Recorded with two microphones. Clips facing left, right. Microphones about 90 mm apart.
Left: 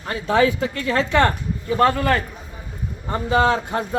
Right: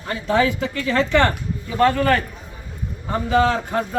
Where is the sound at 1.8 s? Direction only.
30° left (ahead or behind).